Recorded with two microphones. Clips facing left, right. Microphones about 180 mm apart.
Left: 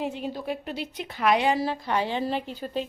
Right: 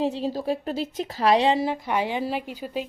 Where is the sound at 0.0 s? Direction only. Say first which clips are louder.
Right 5 dB; 35° right (ahead or behind).